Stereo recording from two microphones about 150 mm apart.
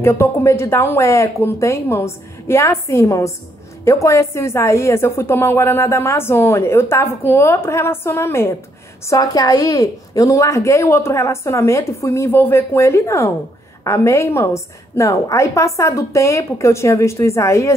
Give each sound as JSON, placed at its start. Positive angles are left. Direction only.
{"t": 0.0, "sound": "a woman's voice", "side_deg": 20}